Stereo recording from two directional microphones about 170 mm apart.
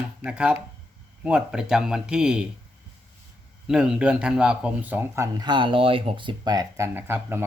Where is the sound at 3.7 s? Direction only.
5° right (ahead or behind).